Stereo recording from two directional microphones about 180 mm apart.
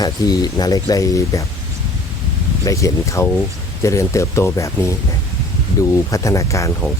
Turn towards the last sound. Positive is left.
turn(degrees=15)  # may be behind; listen again after turning